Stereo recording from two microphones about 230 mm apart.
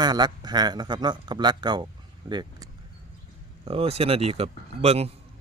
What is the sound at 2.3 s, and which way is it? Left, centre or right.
Vehicle, centre.